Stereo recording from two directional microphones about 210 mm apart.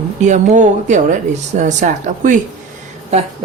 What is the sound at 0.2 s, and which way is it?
Speech, 35° right (ahead or behind).